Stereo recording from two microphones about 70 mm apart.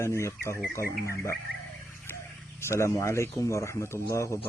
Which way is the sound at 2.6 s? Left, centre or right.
Left.